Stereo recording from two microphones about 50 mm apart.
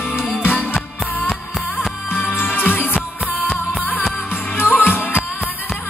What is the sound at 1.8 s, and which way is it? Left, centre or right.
Music, left.